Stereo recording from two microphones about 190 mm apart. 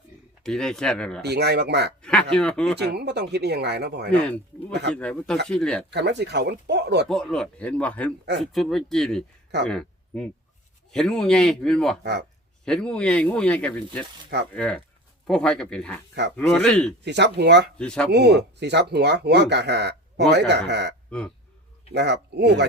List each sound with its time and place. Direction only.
0.4 s speech: 5° left (ahead or behind)
1.2 s speech: 60° right (ahead or behind)
2.0 s speech: 5° left (ahead or behind)
2.7 s speech: 60° right (ahead or behind)
4.1 s speech: 5° left (ahead or behind)
5.9 s speech: 60° right (ahead or behind)
7.1 s speech: 5° left (ahead or behind)
17.0 s speech: 65° right (ahead or behind)
17.7 s speech: 5° left (ahead or behind)
18.1 s speech: 60° right (ahead or behind)
21.1 s speech: 5° left (ahead or behind)
21.9 s speech: 65° right (ahead or behind)